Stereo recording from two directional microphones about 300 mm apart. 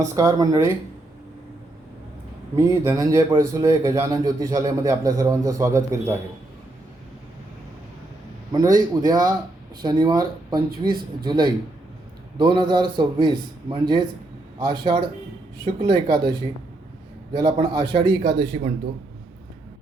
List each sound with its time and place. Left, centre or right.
0.0 s speech: centre
2.6 s speech: centre
8.7 s speech: centre